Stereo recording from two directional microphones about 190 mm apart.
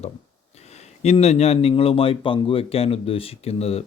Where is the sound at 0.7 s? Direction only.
35° left (ahead or behind).